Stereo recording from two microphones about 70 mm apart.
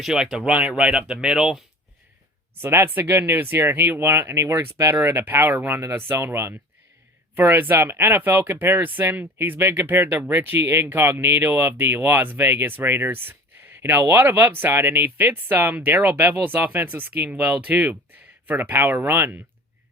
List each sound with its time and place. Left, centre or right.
0.0 s speech: centre
0.5 s speech: centre
2.6 s speech: right
4.9 s speech: right